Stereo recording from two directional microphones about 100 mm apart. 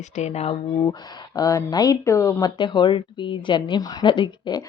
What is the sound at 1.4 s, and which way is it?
Speech, 35° left (ahead or behind).